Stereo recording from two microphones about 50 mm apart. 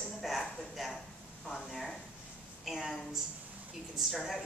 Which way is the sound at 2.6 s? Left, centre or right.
Centre.